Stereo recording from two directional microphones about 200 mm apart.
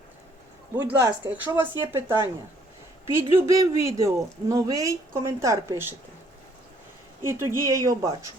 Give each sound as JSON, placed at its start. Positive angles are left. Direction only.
{"t": 0.8, "sound": "speech", "side_deg": -10}
{"t": 3.3, "sound": "speech", "side_deg": -15}
{"t": 7.2, "sound": "speech", "side_deg": -15}